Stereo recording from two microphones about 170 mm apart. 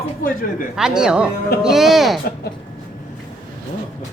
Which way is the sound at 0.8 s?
5° right (ahead or behind).